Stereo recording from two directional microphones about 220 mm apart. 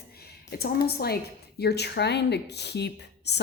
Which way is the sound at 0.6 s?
45° left (ahead or behind).